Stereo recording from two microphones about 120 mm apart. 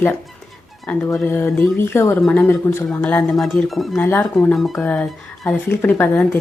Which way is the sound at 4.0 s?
20° left (ahead or behind).